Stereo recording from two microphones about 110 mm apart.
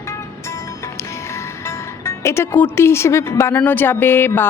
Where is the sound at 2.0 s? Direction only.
25° left (ahead or behind).